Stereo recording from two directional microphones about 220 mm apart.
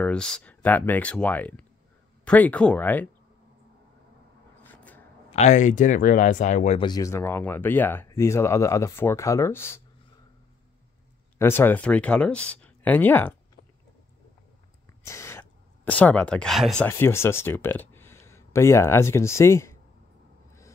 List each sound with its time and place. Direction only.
0.0 s speech: 5° left (ahead or behind)
4.7 s a sound: 5° left (ahead or behind)
5.3 s speech: 30° left (ahead or behind)
6.9 s speech: 15° left (ahead or behind)
11.3 s speech: 10° left (ahead or behind)
15.0 s speech: 10° left (ahead or behind)